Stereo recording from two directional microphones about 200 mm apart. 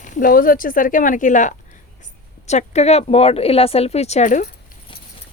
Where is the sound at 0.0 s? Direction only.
40° left (ahead or behind).